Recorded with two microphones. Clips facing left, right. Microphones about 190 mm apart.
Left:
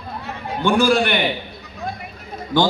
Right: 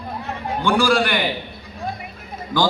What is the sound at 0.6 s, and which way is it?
Speech, 20° left (ahead or behind).